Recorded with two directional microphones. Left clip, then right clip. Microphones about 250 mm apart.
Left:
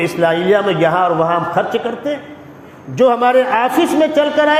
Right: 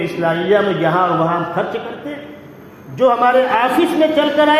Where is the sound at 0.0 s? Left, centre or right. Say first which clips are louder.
Left 3 dB; left.